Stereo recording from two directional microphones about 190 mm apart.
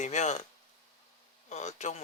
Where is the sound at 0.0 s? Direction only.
40° left (ahead or behind).